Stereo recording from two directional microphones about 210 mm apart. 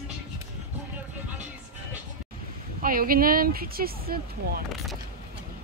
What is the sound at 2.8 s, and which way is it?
Speech, 45° right (ahead or behind).